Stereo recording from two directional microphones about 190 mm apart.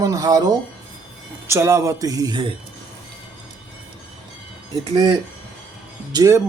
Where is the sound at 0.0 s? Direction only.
20° right (ahead or behind).